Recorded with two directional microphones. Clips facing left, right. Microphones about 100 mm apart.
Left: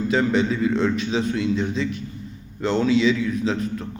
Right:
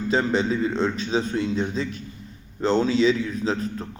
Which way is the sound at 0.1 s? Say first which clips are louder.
Even; 35° right (ahead or behind).